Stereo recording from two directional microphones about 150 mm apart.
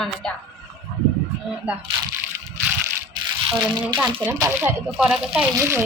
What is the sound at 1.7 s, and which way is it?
Speech, 10° right (ahead or behind).